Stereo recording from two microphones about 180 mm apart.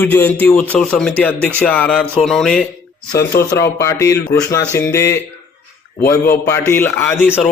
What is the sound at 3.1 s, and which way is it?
Speech, 60° left (ahead or behind).